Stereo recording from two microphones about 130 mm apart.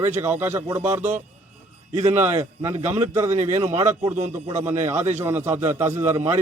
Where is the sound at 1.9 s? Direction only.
20° right (ahead or behind).